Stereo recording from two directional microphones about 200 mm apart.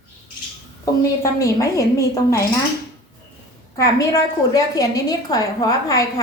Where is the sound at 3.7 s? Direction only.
15° left (ahead or behind).